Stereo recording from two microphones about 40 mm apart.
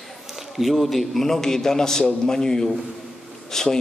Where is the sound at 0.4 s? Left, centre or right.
Centre.